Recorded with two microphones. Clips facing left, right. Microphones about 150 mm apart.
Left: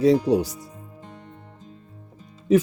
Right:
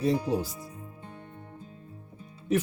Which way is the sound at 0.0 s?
85° left.